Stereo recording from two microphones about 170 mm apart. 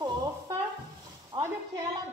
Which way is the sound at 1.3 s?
25° right (ahead or behind).